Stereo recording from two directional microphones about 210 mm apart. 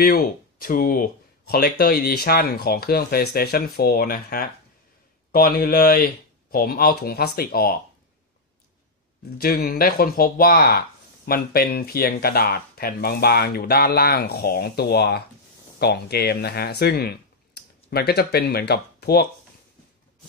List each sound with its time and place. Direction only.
0.0 s speech: 45° left (ahead or behind)
9.4 s speech: 45° left (ahead or behind)